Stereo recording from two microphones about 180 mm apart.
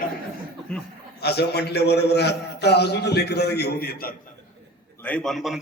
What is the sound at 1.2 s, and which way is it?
A man's voice, 65° left (ahead or behind).